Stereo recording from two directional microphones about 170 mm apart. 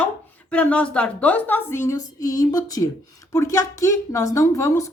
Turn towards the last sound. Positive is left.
turn(degrees=20)  # may be behind; listen again after turning